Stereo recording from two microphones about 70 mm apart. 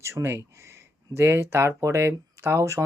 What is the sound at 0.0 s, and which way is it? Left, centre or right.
Speech, right.